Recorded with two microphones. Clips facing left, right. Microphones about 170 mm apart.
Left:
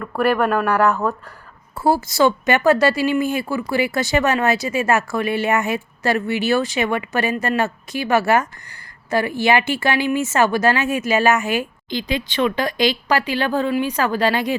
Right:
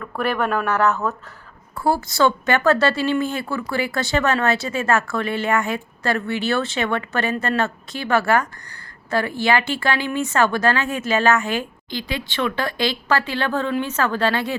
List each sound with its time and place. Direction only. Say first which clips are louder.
0.0 s a woman's voice: left 4 dB; 5° left (ahead or behind)